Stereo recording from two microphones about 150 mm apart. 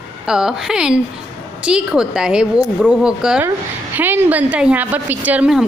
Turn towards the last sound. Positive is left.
turn(degrees=-5)  # may be behind; listen again after turning